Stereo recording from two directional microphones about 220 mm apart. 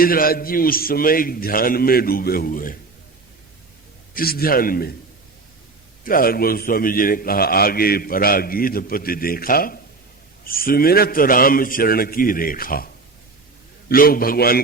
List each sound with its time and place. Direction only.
0.0 s a man's voice: 40° left (ahead or behind)
4.1 s a man's voice: 45° left (ahead or behind)
6.1 s a man's voice: 40° left (ahead or behind)